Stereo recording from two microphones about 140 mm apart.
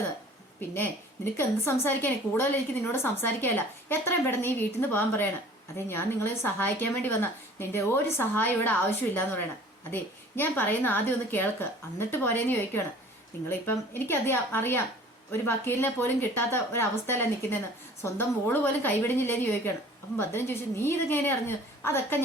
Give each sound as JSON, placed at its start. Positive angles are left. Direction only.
{"t": 0.7, "sound": "a woman's voice", "side_deg": 15}